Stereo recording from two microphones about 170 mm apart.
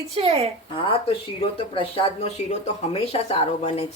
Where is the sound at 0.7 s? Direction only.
35° left (ahead or behind).